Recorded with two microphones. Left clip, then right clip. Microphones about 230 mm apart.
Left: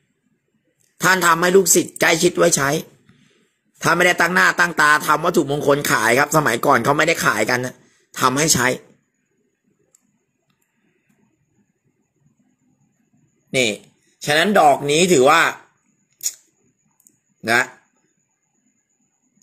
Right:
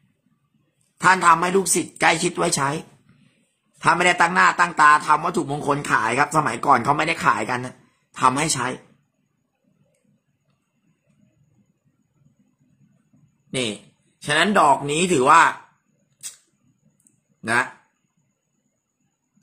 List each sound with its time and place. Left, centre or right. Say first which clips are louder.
1.0 s speech: even; centre
3.8 s speech: left 1 dB; centre
13.5 s a man's voice: left 7 dB; left
17.4 s speech: left 4 dB; centre